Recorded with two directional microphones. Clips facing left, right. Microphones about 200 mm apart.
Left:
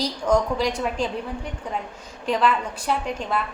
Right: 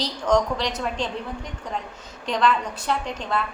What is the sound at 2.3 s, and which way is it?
Speech, 5° left (ahead or behind).